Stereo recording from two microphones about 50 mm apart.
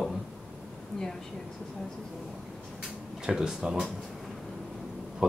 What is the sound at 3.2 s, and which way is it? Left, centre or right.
Speech, centre.